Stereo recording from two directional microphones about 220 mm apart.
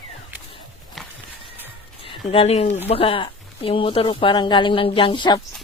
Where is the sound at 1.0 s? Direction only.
Centre (ahead or behind).